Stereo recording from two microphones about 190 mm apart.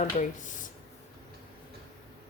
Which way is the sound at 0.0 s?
40° left (ahead or behind).